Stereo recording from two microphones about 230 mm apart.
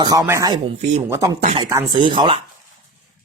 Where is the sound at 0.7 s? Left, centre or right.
Right.